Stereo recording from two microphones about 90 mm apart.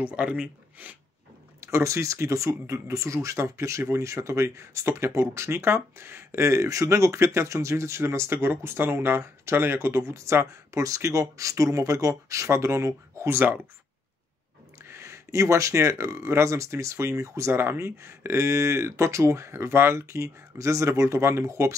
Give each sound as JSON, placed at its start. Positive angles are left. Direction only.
{"t": 0.0, "sound": "speech", "side_deg": -15}
{"t": 1.6, "sound": "speech", "side_deg": -30}
{"t": 14.8, "sound": "speech", "side_deg": -30}